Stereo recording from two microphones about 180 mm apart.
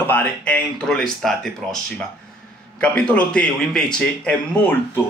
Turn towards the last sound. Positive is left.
turn(degrees=10)  # may be behind; listen again after turning